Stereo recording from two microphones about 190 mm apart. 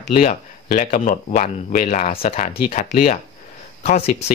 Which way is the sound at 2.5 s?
50° left (ahead or behind).